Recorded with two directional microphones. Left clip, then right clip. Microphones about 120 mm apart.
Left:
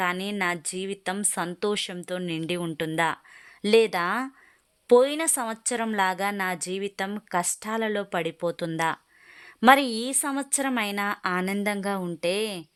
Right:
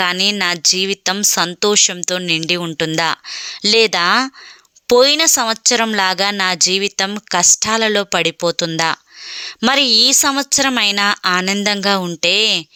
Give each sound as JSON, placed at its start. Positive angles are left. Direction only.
{"t": 0.0, "sound": "speech", "side_deg": -20}
{"t": 3.7, "sound": "speech", "side_deg": -20}
{"t": 6.1, "sound": "speech", "side_deg": -15}
{"t": 9.4, "sound": "a woman's voice", "side_deg": -15}
{"t": 10.1, "sound": "speech", "side_deg": -25}